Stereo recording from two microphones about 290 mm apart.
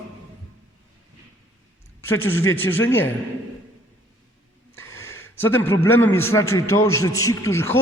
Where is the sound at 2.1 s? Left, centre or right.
Left.